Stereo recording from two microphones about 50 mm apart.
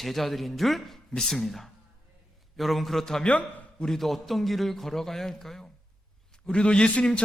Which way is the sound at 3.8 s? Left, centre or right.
Centre.